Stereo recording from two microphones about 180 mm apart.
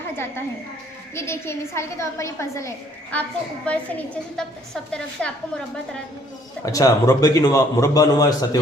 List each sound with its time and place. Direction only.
1.1 s a woman's voice: 15° left (ahead or behind)
6.7 s a man's voice: 20° left (ahead or behind)